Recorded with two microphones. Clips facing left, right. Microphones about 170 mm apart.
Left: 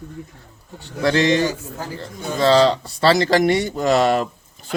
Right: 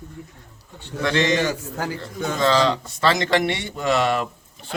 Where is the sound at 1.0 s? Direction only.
35° left (ahead or behind).